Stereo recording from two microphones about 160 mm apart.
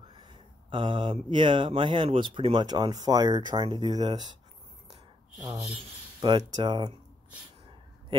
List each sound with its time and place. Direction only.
0.1 s speech: 30° right (ahead or behind)
6.2 s speech: 30° right (ahead or behind)